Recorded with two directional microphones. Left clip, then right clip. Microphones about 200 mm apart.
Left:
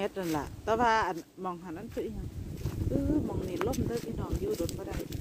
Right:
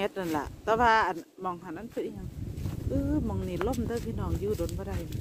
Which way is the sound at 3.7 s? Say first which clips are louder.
Right 1 dB; 10° right (ahead or behind).